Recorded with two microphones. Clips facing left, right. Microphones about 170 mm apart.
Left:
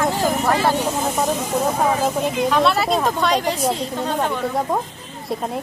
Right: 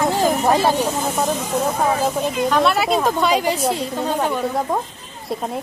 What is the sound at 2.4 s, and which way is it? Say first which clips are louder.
Speech: right 1 dB; centre (ahead or behind).